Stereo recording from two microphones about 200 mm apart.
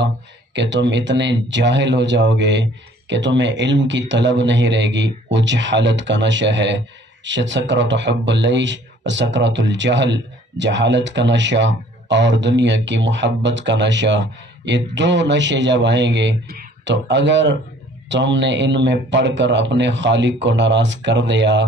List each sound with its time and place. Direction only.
0.6 s speech: 60° right (ahead or behind)